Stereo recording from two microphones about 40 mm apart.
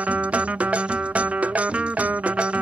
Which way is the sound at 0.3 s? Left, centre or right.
Right.